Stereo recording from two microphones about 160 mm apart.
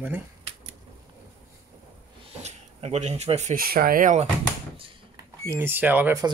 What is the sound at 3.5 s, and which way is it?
Speech, 65° right (ahead or behind).